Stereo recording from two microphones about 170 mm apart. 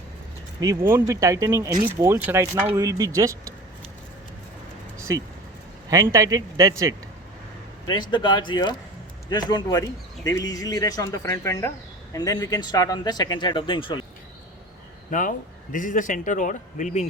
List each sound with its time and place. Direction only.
0.6 s speech: 20° right (ahead or behind)
5.1 s speech: 20° right (ahead or behind)
8.1 s speech: 25° left (ahead or behind)
15.1 s a man's voice: 50° left (ahead or behind)